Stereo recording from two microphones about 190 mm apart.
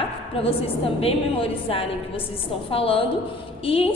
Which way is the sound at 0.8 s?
30° left (ahead or behind).